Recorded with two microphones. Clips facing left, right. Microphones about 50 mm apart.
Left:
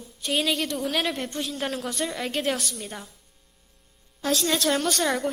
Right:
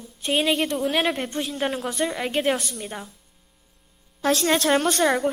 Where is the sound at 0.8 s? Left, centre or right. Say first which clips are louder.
Right 4 dB; centre.